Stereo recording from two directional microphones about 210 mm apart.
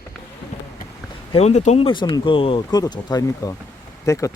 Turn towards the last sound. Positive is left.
turn(degrees=15)  # may be behind; listen again after turning